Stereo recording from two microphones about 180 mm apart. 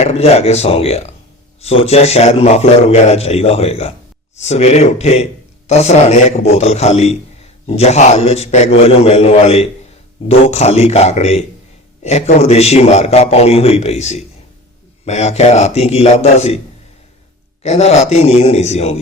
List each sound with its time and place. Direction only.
0.0 s a man's voice: 35° left (ahead or behind)
17.6 s a man's voice: 35° left (ahead or behind)